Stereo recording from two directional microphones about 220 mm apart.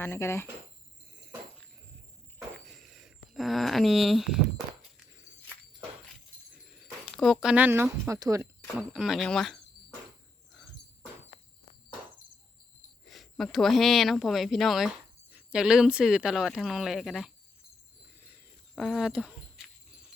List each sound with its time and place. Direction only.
0.0 s speech: 10° left (ahead or behind)
2.6 s a sound: centre (ahead or behind)
6.8 s speech: centre (ahead or behind); by 8.4 s 15° right (ahead or behind)
8.7 s speech: centre (ahead or behind)
13.1 s speech: centre (ahead or behind)
18.8 s speech: centre (ahead or behind)